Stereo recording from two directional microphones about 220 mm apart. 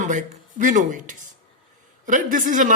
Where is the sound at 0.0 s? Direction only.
35° right (ahead or behind).